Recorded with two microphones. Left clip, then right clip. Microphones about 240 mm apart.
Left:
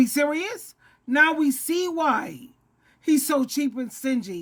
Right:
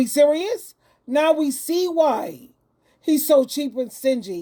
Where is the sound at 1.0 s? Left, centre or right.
Centre.